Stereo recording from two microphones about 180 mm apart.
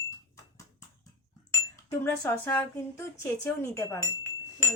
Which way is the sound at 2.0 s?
10° left (ahead or behind).